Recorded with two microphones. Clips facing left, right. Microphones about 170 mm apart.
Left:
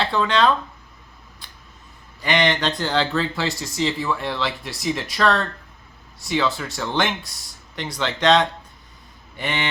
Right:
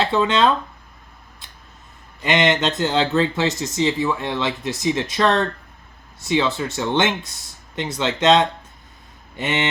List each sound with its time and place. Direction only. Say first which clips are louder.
0.0 s speech: right 2 dB; 25° right (ahead or behind)
2.2 s speech: right 2 dB; 20° right (ahead or behind)